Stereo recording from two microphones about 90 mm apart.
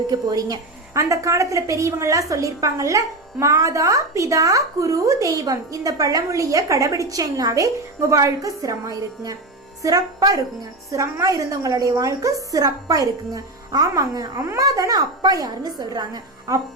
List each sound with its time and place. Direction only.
0.1 s a woman's voice: 45° right (ahead or behind)